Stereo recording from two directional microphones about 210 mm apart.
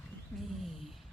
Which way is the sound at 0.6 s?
Centre (ahead or behind).